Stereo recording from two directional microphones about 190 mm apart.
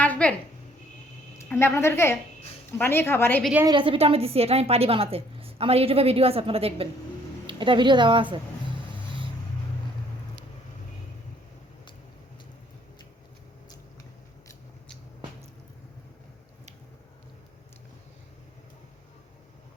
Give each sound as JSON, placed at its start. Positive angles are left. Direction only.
{"t": 0.0, "sound": "a sound", "side_deg": 5}
{"t": 1.4, "sound": "a woman's voice", "side_deg": 15}
{"t": 3.7, "sound": "a woman's voice", "side_deg": -25}